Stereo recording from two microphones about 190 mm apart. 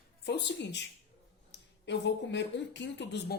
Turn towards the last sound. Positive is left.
turn(degrees=65)  # may be behind; listen again after turning